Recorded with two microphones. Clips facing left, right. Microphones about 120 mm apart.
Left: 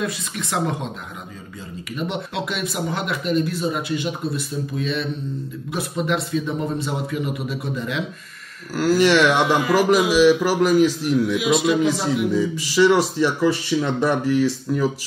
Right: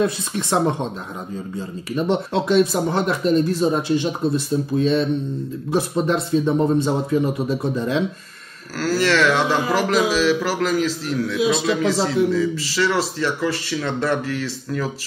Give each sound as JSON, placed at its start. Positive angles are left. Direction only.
{"t": 0.0, "sound": "speech", "side_deg": -30}
{"t": 2.0, "sound": "speech", "side_deg": -35}
{"t": 8.7, "sound": "speech", "side_deg": 15}